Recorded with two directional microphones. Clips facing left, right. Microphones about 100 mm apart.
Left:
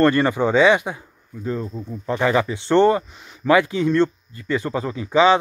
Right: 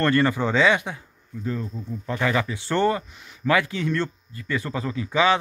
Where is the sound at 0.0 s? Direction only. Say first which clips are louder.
Left 4 dB; 20° left (ahead or behind).